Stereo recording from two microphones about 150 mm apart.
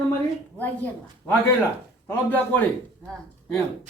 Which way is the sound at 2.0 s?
10° left (ahead or behind).